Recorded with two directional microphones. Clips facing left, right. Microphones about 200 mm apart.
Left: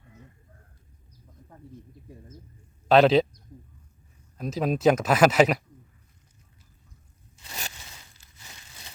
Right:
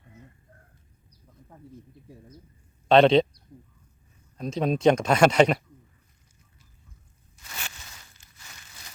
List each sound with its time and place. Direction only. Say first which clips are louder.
2.9 s speech: right 1 dB; 5° left (ahead or behind)
4.4 s speech: right 1 dB; 5° left (ahead or behind)
7.3 s a sound: left 2 dB; 25° left (ahead or behind)